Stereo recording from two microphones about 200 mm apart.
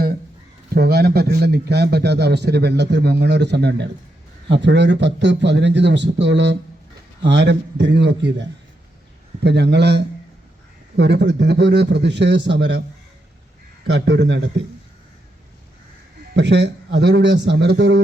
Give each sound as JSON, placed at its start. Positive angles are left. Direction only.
{"t": 0.7, "sound": "a man's voice", "side_deg": -50}
{"t": 13.9, "sound": "a man's voice", "side_deg": -60}
{"t": 16.3, "sound": "a man's voice", "side_deg": -60}